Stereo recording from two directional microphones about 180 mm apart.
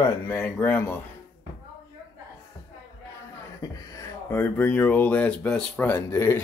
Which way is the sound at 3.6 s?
15° left (ahead or behind).